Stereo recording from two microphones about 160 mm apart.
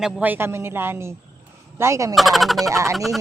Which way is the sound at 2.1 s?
Centre (ahead or behind).